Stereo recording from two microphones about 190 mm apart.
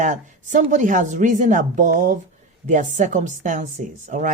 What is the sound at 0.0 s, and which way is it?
Speech, 40° right (ahead or behind).